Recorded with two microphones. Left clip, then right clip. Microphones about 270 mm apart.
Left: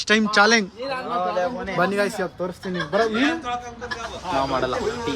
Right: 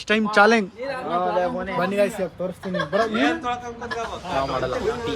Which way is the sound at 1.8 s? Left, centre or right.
Centre.